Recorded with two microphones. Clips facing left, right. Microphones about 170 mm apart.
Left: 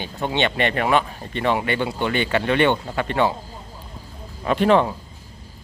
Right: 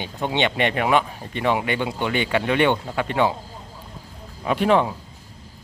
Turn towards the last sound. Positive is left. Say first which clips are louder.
# left 2 dB
turn(degrees=-5)  # may be behind; listen again after turning